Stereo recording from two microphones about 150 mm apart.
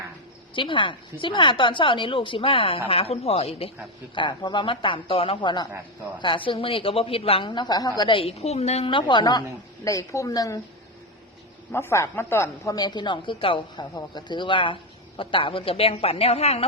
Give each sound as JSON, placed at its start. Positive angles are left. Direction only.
{"t": 0.5, "sound": "speech", "side_deg": 35}
{"t": 4.1, "sound": "a woman's voice", "side_deg": 30}
{"t": 11.7, "sound": "a woman's voice", "side_deg": 15}